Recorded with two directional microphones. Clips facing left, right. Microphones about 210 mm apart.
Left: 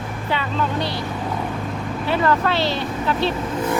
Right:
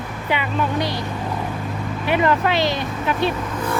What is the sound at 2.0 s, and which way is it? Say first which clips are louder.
Speech: right 1 dB; 15° right (ahead or behind).